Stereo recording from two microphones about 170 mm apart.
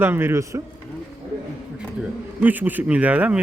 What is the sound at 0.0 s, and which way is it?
Speech, 15° right (ahead or behind).